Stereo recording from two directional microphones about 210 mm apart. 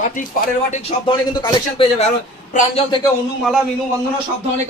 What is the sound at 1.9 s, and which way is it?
Speech, 30° left (ahead or behind).